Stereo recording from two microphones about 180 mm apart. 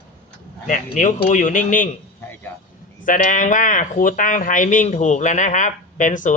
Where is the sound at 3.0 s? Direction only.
45° left (ahead or behind).